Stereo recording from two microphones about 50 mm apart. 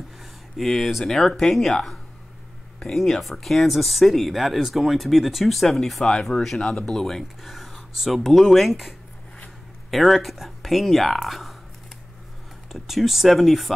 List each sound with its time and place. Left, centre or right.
0.2 s speech: centre
6.6 s speech: left
6.9 s speech: centre
12.7 s speech: centre